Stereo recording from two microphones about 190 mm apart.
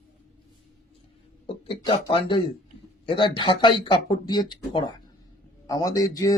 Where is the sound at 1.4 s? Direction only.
25° left (ahead or behind).